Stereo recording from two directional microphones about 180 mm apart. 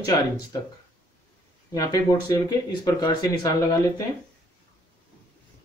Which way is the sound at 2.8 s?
20° left (ahead or behind).